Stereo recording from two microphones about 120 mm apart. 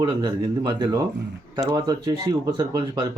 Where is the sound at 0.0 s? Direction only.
35° right (ahead or behind).